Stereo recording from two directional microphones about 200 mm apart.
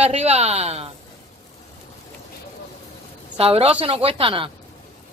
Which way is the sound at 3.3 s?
30° right (ahead or behind).